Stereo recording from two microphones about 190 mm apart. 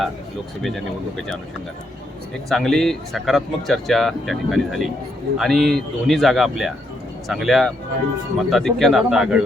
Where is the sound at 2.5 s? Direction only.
Centre (ahead or behind).